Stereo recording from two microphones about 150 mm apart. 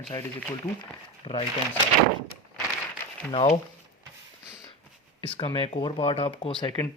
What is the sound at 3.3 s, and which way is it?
Speech, 45° left (ahead or behind).